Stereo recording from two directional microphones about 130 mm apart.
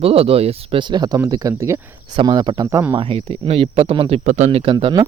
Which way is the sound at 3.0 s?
45° right (ahead or behind).